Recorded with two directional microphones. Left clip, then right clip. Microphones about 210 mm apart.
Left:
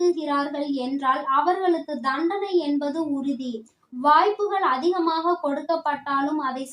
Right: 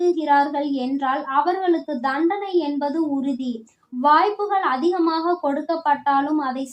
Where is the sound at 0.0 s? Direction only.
35° right (ahead or behind).